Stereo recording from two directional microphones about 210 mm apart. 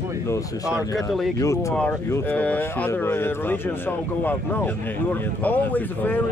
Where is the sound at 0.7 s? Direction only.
Centre (ahead or behind).